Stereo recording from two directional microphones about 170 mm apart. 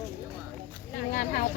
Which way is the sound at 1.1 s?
50° left (ahead or behind).